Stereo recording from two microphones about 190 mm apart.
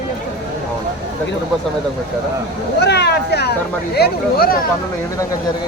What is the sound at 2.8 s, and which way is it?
Speech, 60° left (ahead or behind).